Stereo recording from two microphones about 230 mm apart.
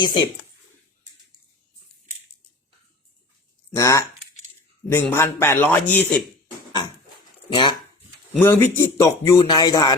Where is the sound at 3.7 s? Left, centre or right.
Centre.